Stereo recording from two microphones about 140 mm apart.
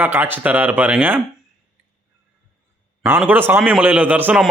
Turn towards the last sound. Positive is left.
turn(degrees=-10)  # may be behind; listen again after turning